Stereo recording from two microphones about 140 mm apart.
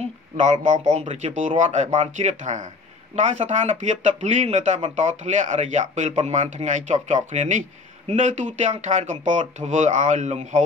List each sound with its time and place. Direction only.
0.0 s speech: 55° right (ahead or behind)
6.1 s speech: 45° right (ahead or behind)